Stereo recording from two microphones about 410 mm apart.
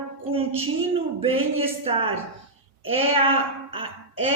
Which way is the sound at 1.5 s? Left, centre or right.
Centre.